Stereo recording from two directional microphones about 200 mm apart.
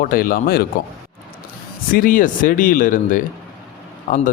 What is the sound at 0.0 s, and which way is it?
Speech, 45° left (ahead or behind).